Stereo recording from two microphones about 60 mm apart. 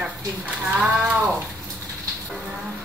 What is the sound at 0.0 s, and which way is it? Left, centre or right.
Speech, right.